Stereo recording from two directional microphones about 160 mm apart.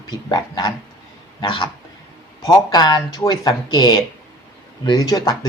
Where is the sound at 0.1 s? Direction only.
25° left (ahead or behind).